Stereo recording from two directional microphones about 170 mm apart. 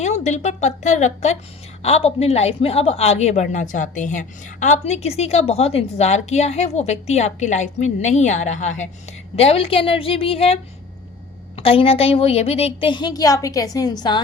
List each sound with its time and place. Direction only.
0.0 s a woman's voice: 40° left (ahead or behind); by 14.2 s 25° left (ahead or behind)